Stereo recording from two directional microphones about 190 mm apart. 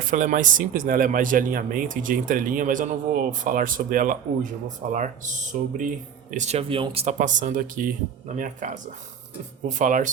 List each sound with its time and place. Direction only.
0.0 s speech: 45° right (ahead or behind)